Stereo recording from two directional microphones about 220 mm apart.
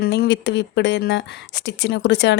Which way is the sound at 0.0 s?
50° left (ahead or behind).